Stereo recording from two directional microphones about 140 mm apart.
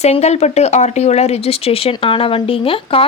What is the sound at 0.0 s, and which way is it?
A woman's voice, 50° left (ahead or behind).